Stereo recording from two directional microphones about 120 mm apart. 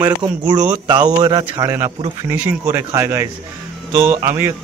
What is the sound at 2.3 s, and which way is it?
A man's voice, 15° right (ahead or behind).